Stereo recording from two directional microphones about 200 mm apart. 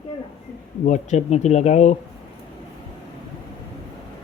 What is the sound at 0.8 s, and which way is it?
Speech, 35° left (ahead or behind).